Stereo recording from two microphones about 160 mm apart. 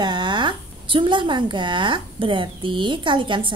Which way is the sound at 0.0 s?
30° right (ahead or behind).